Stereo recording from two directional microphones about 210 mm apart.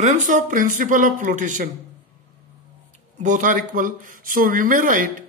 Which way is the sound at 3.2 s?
40° right (ahead or behind).